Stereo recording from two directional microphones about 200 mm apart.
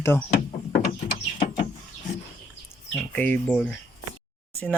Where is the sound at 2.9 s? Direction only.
10° left (ahead or behind).